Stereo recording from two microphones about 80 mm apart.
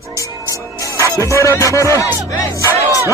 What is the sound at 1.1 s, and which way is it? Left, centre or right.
Speech, left.